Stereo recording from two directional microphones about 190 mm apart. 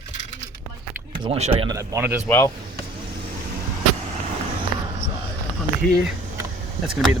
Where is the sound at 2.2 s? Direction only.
15° left (ahead or behind).